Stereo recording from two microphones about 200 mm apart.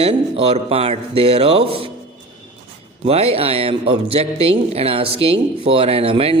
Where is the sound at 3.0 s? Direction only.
30° right (ahead or behind).